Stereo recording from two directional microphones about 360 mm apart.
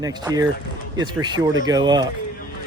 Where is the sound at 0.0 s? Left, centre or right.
Centre.